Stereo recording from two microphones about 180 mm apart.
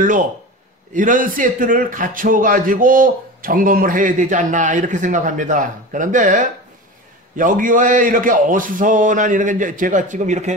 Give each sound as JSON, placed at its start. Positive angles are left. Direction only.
{"t": 0.9, "sound": "speech", "side_deg": -45}